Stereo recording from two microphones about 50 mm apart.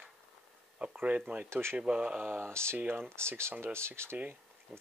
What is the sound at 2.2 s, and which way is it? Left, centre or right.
Speech, right.